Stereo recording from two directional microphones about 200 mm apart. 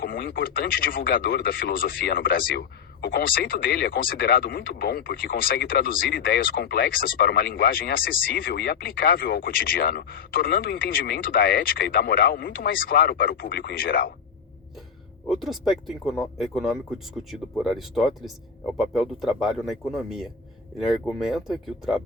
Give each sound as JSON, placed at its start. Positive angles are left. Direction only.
{"t": 0.0, "sound": "speech", "side_deg": 45}
{"t": 15.3, "sound": "speech", "side_deg": 0}